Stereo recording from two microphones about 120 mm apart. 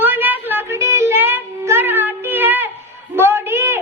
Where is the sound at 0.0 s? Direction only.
15° right (ahead or behind).